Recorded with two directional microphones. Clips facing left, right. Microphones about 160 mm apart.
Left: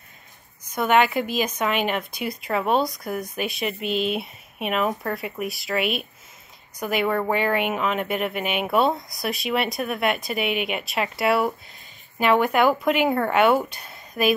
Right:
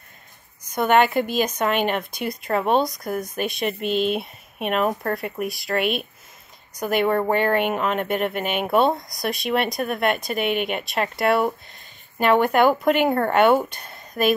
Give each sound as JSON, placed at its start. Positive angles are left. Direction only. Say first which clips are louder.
{"t": 0.7, "sound": "speech", "louder": "right 2 dB", "side_deg": 0}
{"t": 7.1, "sound": "speech", "louder": "right 2 dB", "side_deg": -25}
{"t": 7.3, "sound": "speech", "louder": "right 2 dB", "side_deg": 5}